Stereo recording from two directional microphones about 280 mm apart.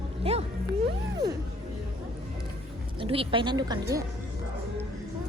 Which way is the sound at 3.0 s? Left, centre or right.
Centre.